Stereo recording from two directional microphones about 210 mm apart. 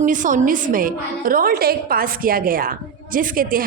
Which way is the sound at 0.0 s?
40° right (ahead or behind).